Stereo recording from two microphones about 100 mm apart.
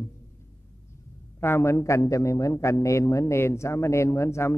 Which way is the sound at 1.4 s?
25° left (ahead or behind).